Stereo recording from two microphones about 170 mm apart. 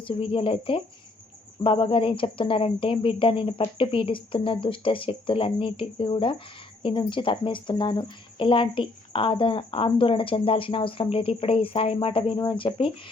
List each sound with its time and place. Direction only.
0.0 s speech: 30° left (ahead or behind)